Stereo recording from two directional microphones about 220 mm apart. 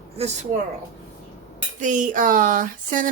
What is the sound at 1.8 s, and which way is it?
Speech, 35° right (ahead or behind).